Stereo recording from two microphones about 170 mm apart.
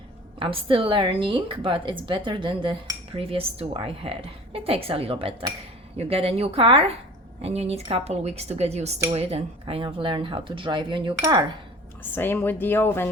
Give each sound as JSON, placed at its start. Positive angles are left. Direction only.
{"t": 0.3, "sound": "a woman's voice", "side_deg": -30}
{"t": 12.1, "sound": "speech", "side_deg": 10}